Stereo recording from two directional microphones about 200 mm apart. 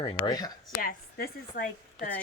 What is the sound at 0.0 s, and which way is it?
Speech, 20° left (ahead or behind).